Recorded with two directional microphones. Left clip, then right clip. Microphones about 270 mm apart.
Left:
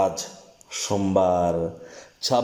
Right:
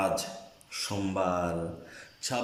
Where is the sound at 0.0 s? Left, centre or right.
Left.